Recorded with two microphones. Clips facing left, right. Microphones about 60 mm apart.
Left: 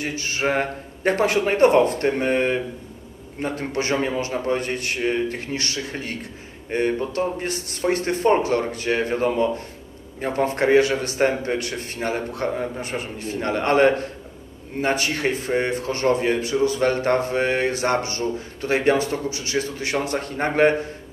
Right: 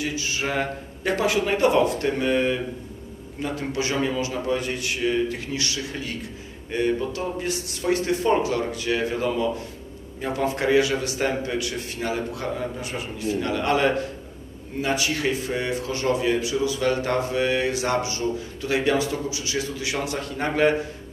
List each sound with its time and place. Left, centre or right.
0.0 s a man's voice: left